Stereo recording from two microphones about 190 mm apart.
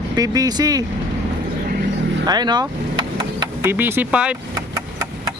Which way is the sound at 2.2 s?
20° right (ahead or behind).